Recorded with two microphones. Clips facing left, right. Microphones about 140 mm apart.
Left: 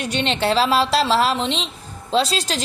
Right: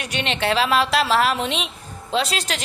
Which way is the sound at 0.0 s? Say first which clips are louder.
Left 3 dB; 30° left (ahead or behind).